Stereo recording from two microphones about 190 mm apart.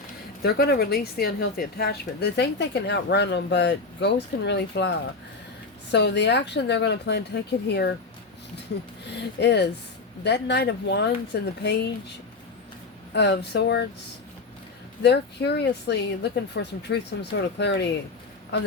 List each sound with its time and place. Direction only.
0.4 s speech: 55° left (ahead or behind)
9.0 s speech: 65° left (ahead or behind)
13.1 s speech: 65° left (ahead or behind)
15.0 s speech: 60° left (ahead or behind)